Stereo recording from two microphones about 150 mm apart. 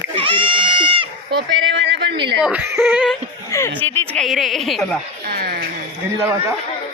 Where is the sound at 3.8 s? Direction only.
10° left (ahead or behind).